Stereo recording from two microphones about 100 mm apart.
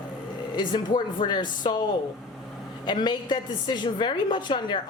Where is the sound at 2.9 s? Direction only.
50° left (ahead or behind).